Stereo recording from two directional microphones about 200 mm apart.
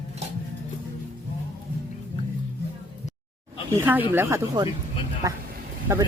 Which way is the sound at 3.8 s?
10° right (ahead or behind).